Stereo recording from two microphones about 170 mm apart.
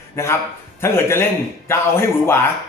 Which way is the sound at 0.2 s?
20° left (ahead or behind).